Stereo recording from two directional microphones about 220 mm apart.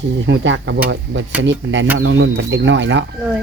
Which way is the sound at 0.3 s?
55° right (ahead or behind).